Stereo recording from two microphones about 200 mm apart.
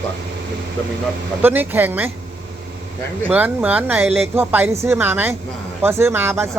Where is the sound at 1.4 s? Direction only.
10° right (ahead or behind).